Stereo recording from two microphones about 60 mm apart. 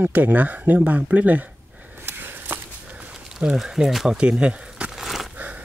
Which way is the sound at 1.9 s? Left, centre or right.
Right.